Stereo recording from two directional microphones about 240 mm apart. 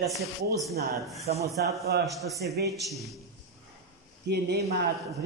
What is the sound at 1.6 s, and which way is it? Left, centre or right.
Speech, right.